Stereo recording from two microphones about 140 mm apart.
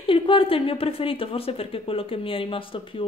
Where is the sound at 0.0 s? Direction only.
40° left (ahead or behind).